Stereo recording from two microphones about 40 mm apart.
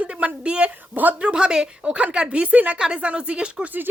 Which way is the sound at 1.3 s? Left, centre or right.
Centre.